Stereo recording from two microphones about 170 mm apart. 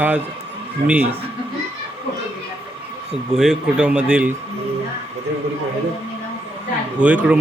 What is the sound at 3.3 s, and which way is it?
A man's voice, 5° right (ahead or behind).